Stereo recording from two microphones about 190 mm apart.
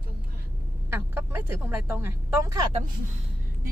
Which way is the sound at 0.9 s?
10° right (ahead or behind).